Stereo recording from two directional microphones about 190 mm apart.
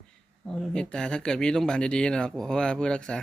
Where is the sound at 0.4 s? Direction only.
Centre (ahead or behind).